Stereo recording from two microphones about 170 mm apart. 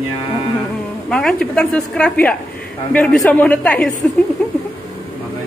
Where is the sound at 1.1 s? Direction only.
5° left (ahead or behind).